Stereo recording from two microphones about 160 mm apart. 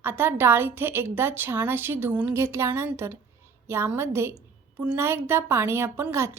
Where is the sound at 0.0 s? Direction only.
15° right (ahead or behind).